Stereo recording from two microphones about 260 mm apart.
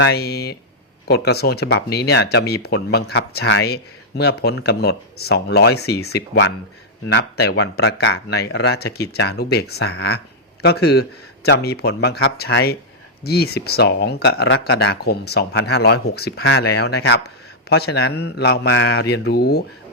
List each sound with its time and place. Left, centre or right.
0.0 s speech: left